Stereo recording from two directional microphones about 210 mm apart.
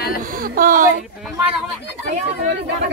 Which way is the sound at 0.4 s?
40° right (ahead or behind).